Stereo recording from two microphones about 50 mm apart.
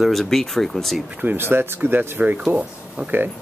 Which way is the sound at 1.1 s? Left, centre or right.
Right.